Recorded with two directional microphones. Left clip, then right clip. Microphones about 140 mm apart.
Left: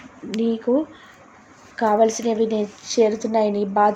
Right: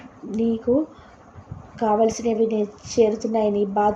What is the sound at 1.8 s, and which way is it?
A woman's voice, 20° left (ahead or behind).